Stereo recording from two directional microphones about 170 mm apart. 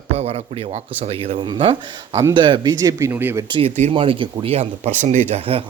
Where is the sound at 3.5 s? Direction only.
30° right (ahead or behind).